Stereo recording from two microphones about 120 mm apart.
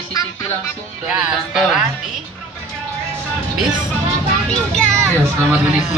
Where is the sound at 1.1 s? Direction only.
10° right (ahead or behind).